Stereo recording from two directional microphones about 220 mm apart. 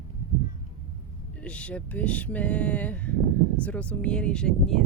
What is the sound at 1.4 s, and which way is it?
Speech, 5° left (ahead or behind).